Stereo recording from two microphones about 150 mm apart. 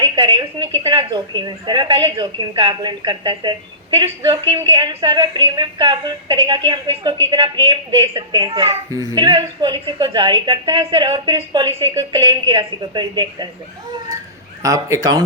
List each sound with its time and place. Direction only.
0.0 s a sound: 30° right (ahead or behind)
0.8 s a woman's voice: 30° right (ahead or behind)
14.6 s a woman's voice: 20° right (ahead or behind)